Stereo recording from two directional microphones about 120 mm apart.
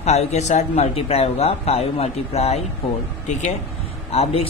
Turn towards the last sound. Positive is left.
turn(degrees=55)  # may be behind; listen again after turning